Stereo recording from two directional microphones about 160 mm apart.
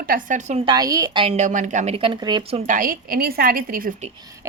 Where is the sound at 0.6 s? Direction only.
25° right (ahead or behind).